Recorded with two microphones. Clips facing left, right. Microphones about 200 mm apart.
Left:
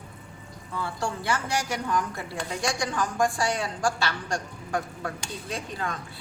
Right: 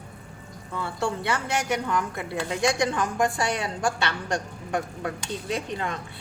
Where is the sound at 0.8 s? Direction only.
20° right (ahead or behind).